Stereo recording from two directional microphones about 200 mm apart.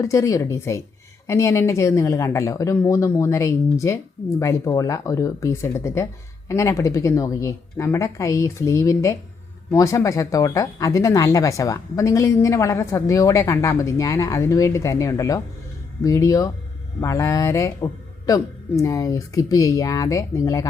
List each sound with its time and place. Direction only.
0.0 s speech: 15° left (ahead or behind)